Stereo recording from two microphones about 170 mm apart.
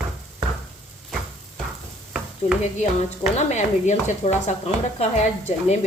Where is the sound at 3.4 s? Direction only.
45° left (ahead or behind).